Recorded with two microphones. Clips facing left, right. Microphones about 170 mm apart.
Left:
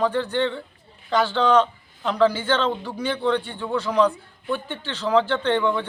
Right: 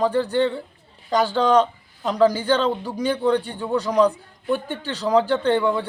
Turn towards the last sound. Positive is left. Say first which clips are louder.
# right 2 dB
turn(degrees=-40)  # may be behind; listen again after turning